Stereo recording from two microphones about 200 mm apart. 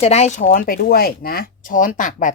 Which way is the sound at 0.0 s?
35° left (ahead or behind).